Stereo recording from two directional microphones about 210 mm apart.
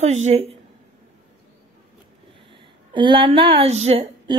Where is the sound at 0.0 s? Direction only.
35° right (ahead or behind).